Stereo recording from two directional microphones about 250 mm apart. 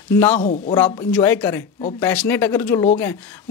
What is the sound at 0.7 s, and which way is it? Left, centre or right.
Speech, centre.